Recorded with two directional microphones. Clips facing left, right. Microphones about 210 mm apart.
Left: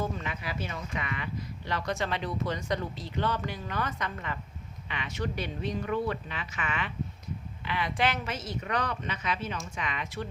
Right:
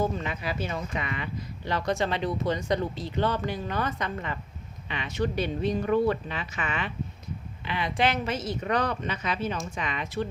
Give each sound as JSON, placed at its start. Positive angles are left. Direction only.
{"t": 0.0, "sound": "a woman's voice", "side_deg": -30}